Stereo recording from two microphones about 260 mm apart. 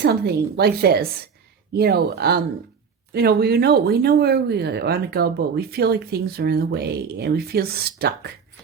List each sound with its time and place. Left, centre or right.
0.0 s speech: right